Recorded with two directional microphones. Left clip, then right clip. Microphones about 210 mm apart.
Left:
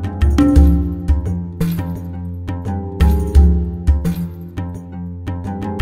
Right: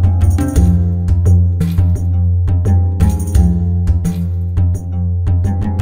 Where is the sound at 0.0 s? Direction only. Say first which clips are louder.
Left 5 dB; 15° left (ahead or behind).